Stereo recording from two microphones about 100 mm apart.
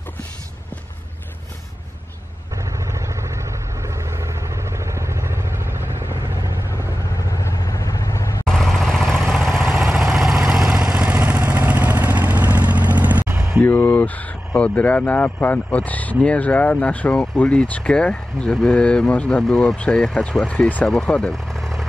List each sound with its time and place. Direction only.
2.5 s vehicle: 30° right (ahead or behind)
7.2 s vehicle: 35° left (ahead or behind)
8.5 s vehicle: 5° left (ahead or behind); by 13.5 s 15° right (ahead or behind)
13.7 s a sound: 20° left (ahead or behind)
14.6 s speech: 15° left (ahead or behind)